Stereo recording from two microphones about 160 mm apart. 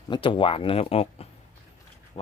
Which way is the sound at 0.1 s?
30° left (ahead or behind).